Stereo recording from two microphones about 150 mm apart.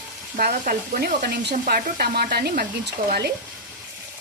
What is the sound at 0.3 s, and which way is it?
Speech, 75° right (ahead or behind).